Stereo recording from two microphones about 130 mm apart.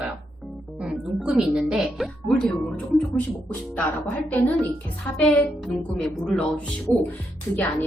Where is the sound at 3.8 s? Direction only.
15° left (ahead or behind).